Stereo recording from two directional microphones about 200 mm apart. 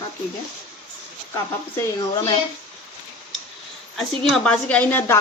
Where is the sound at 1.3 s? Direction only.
15° left (ahead or behind).